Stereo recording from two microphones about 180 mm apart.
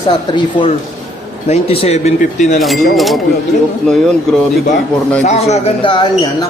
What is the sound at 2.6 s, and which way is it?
Speech, centre (ahead or behind).